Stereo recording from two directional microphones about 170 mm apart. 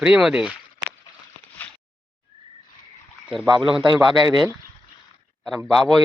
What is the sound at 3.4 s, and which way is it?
Speech, 30° right (ahead or behind).